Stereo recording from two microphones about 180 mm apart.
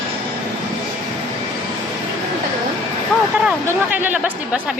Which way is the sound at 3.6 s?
10° right (ahead or behind).